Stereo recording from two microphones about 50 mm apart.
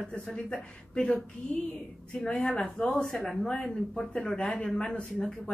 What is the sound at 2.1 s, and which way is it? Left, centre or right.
A woman's voice, centre.